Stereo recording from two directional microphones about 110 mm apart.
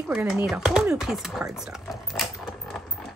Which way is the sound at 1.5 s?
5° right (ahead or behind).